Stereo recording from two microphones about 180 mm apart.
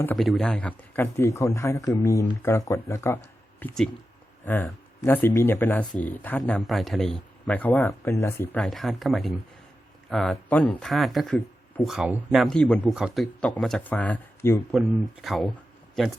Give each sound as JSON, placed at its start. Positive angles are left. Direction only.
{"t": 0.2, "sound": "speech", "side_deg": 0}
{"t": 8.6, "sound": "speech", "side_deg": 0}
{"t": 14.7, "sound": "speech", "side_deg": 0}